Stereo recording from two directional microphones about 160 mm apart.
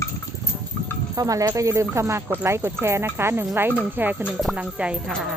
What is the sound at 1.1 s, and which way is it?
Speech, 20° right (ahead or behind).